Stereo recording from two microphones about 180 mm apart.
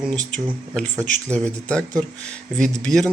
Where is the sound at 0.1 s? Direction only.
5° left (ahead or behind).